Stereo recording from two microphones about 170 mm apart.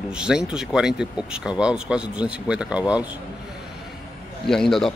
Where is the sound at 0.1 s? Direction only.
5° right (ahead or behind).